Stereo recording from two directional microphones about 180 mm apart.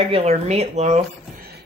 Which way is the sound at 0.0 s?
35° right (ahead or behind).